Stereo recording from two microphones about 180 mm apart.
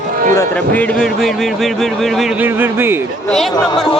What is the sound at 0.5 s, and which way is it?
Speech, 5° left (ahead or behind).